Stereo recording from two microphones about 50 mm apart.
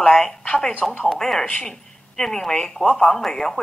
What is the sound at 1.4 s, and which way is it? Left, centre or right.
Speech, left.